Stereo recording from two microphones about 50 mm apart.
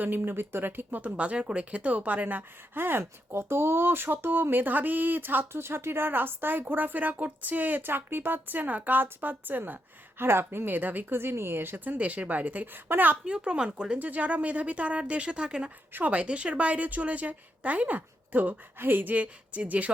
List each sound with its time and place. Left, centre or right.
0.0 s speech: right
5.5 s speech: right
10.2 s speech: right
10.7 s speech: right
11.2 s speech: right
11.9 s speech: right
13.2 s speech: right
14.0 s speech: right
15.9 s speech: right
16.1 s speech: right